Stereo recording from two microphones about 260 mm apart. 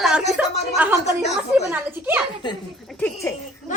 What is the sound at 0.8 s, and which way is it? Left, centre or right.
A woman's voice, centre.